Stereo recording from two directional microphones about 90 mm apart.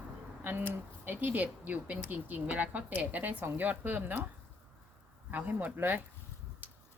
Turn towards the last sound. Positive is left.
turn(degrees=-20)  # may be behind; listen again after turning